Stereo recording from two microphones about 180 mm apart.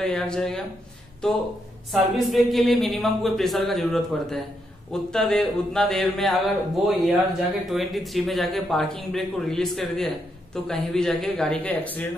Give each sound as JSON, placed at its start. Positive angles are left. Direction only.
{"t": 0.0, "sound": "a man's voice", "side_deg": 5}
{"t": 1.9, "sound": "a man's voice", "side_deg": 0}